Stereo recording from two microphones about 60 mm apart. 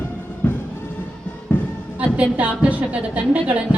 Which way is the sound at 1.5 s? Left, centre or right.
Left.